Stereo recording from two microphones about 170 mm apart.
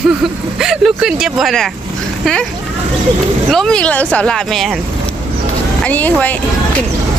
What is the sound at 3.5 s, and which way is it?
Speech, 5° left (ahead or behind).